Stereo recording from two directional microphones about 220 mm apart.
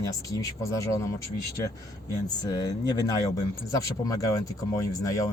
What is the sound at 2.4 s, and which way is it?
Speech, 15° left (ahead or behind).